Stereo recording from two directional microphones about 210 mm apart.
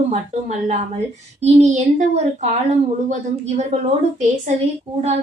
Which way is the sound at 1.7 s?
35° right (ahead or behind).